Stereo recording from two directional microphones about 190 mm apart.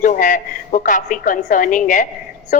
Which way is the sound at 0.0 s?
45° left (ahead or behind).